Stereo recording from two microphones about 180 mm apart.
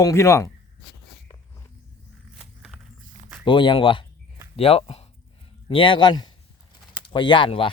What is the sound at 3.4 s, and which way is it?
A man's voice, 25° left (ahead or behind).